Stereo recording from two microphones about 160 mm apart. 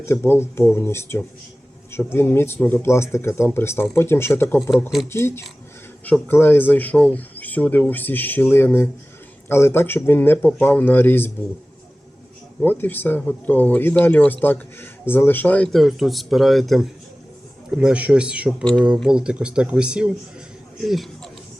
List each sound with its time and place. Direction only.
0.0 s speech: 15° left (ahead or behind)
12.5 s speech: 10° left (ahead or behind); by 18.5 s 5° right (ahead or behind)
18.6 s speech: 5° left (ahead or behind)
19.0 s speech: 5° right (ahead or behind)